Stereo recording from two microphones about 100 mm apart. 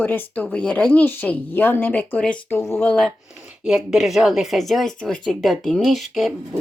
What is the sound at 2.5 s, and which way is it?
Speech, 25° left (ahead or behind).